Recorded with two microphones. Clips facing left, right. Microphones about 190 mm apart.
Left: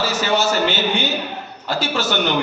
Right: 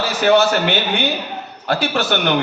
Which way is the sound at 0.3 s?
60° right (ahead or behind).